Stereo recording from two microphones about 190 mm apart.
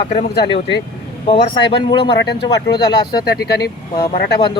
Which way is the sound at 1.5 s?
25° left (ahead or behind).